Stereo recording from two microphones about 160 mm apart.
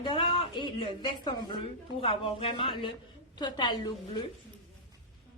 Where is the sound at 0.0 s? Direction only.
30° left (ahead or behind).